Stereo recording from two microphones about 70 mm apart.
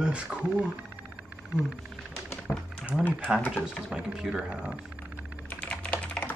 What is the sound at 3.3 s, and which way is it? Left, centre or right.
Speech, centre.